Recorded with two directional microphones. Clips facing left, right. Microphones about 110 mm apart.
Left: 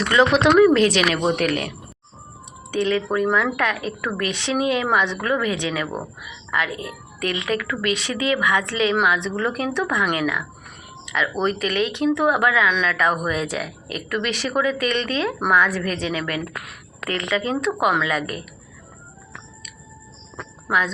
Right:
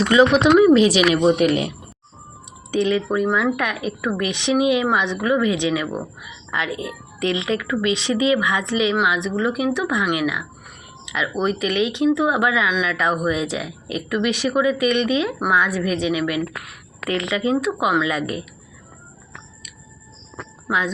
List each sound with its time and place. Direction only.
0.1 s speech: 10° right (ahead or behind)
1.5 s a woman's voice: 20° right (ahead or behind)
2.7 s a woman's voice: 20° right (ahead or behind)
20.7 s speech: 15° right (ahead or behind)